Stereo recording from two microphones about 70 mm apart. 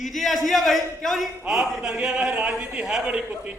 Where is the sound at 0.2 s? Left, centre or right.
Centre.